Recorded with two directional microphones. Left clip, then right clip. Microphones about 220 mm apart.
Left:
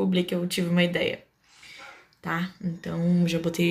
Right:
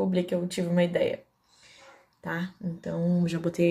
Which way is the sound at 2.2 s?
5° right (ahead or behind).